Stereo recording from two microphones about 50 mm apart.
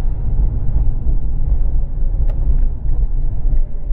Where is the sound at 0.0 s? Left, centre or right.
Right.